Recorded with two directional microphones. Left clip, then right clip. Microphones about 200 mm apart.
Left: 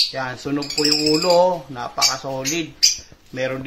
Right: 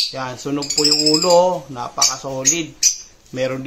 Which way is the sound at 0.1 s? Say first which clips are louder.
Even; 10° right (ahead or behind).